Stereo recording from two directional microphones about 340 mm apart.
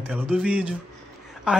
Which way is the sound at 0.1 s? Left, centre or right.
Centre.